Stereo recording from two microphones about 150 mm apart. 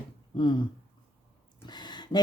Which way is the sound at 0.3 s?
30° left (ahead or behind).